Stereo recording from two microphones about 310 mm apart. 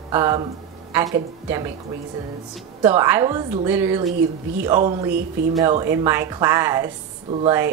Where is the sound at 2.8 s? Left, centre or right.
Centre.